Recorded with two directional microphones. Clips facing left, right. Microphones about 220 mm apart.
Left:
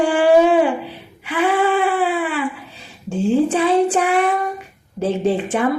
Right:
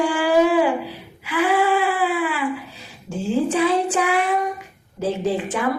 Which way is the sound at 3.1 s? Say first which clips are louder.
Left 5 dB; 30° left (ahead or behind).